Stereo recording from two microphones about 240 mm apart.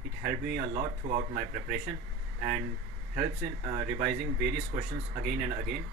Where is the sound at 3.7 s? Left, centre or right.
Centre.